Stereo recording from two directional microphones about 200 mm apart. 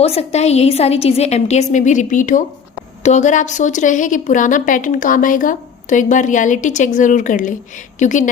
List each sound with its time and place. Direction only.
0.0 s a woman's voice: 30° left (ahead or behind)